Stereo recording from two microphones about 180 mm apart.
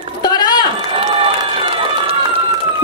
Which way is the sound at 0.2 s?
20° left (ahead or behind).